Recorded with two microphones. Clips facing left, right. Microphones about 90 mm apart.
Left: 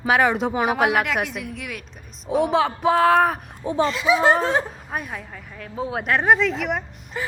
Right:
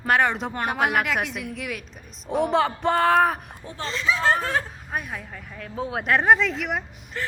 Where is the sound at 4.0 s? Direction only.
15° left (ahead or behind).